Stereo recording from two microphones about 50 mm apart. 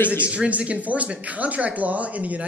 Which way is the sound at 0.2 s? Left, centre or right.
Right.